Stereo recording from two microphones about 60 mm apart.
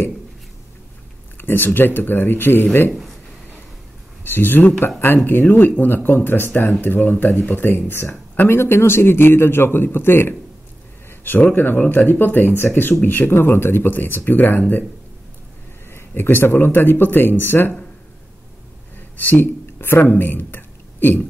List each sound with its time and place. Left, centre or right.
1.4 s speech: left
4.2 s speech: left
15.9 s speech: left
18.9 s a sound: left